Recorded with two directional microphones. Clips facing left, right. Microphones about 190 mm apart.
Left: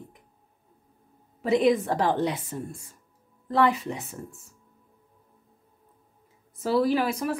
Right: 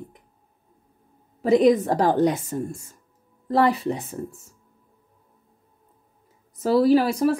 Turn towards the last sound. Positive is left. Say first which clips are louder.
# right 7 dB
turn(degrees=-35)  # may be behind; listen again after turning